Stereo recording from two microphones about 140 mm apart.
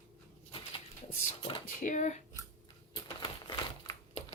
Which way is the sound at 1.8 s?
60° left (ahead or behind).